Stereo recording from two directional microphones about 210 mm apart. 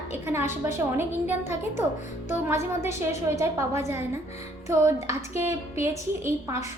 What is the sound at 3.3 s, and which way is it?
Speech, 15° right (ahead or behind).